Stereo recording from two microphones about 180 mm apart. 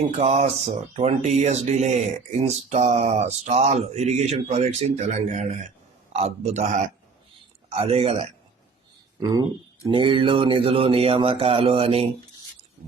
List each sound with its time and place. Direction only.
0.0 s speech: 40° right (ahead or behind)
9.3 s speech: 20° right (ahead or behind)